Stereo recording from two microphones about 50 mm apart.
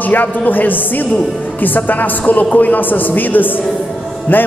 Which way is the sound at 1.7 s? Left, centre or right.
Left.